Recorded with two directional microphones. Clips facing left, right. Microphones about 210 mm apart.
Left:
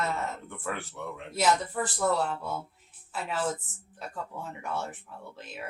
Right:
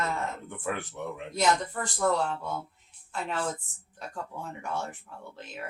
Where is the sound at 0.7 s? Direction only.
15° right (ahead or behind).